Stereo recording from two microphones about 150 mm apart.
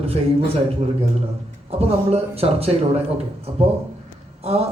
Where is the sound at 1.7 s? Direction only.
40° right (ahead or behind).